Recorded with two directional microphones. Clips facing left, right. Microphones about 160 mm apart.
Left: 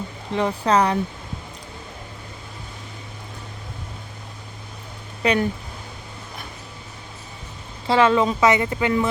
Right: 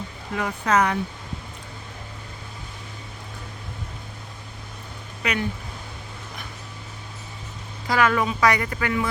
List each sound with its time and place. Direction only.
0.3 s speech: 30° left (ahead or behind)
5.2 s speech: 30° left (ahead or behind)
7.9 s speech: 25° left (ahead or behind)